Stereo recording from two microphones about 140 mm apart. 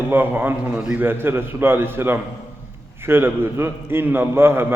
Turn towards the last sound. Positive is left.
turn(degrees=-15)  # may be behind; listen again after turning